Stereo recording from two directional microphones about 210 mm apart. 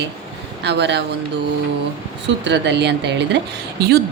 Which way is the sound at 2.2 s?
55° right (ahead or behind).